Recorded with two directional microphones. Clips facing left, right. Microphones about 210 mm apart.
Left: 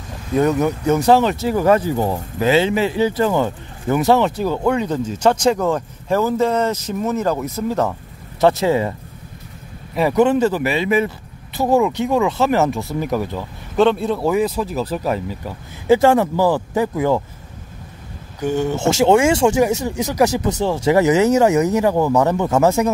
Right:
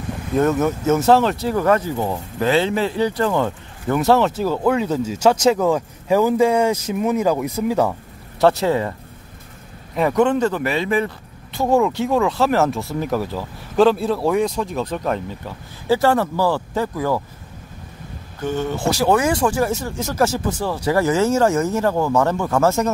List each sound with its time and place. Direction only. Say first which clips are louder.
0.3 s speech: left 1 dB; centre (ahead or behind)
8.4 s speech: left 1 dB; centre (ahead or behind)
9.9 s speech: left 2 dB; 5° left (ahead or behind); by 17.2 s 20° left (ahead or behind)
18.4 s speech: left 3 dB; 15° left (ahead or behind)